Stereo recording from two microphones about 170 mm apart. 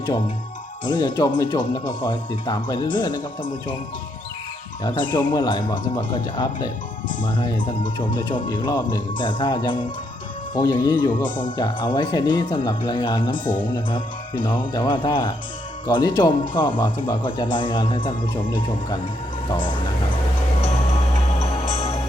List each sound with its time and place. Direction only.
0.9 s speech: 25° left (ahead or behind)
4.8 s speech: 25° left (ahead or behind)
13.3 s speech: 50° left (ahead or behind)
13.7 s speech: 25° left (ahead or behind)
19.5 s speech: 30° left (ahead or behind)